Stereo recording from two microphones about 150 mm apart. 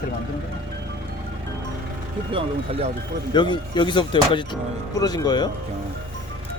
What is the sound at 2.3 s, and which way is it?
Speech, 40° right (ahead or behind).